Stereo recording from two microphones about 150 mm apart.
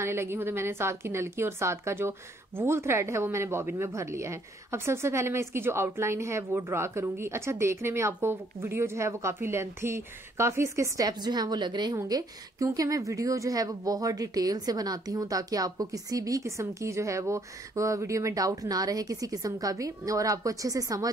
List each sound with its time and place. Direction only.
0.0 s a woman's voice: 15° right (ahead or behind)